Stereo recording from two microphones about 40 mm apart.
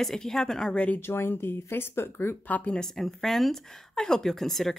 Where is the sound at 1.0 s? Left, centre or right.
Left.